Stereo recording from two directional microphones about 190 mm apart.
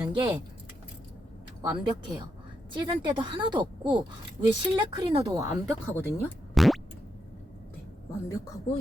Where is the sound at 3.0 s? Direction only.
25° right (ahead or behind).